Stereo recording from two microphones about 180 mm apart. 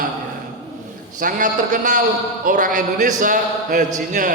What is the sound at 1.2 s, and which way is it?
A man's voice, 45° right (ahead or behind).